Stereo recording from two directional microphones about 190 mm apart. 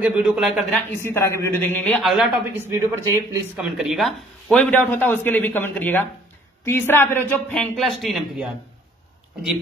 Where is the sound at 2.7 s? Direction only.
15° right (ahead or behind).